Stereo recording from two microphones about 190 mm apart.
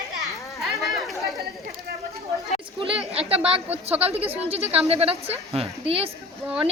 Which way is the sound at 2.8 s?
30° right (ahead or behind).